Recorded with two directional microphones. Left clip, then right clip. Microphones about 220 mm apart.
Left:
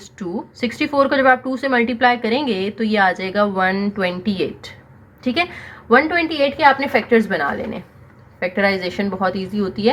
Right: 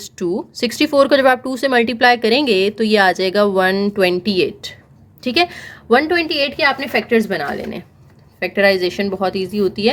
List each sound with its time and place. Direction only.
0.6 s a woman's voice: 55° right (ahead or behind); by 9.9 s 35° right (ahead or behind)